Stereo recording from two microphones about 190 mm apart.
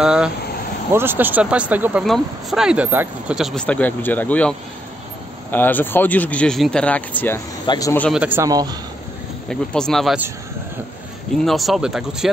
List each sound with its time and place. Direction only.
0.0 s speech: 5° right (ahead or behind)
7.6 s speech: 25° left (ahead or behind)
8.1 s speech: 10° right (ahead or behind)
9.5 s speech: 5° left (ahead or behind)
11.4 s speech: centre (ahead or behind)